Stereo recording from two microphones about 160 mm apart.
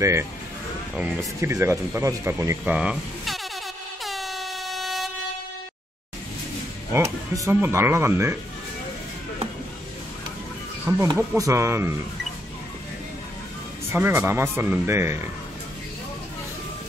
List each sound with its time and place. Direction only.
0.0 s speech: 20° right (ahead or behind)
4.0 s air horn: centre (ahead or behind)
6.9 s speech: 15° right (ahead or behind)
10.9 s speech: 15° right (ahead or behind)
13.9 s speech: 15° right (ahead or behind)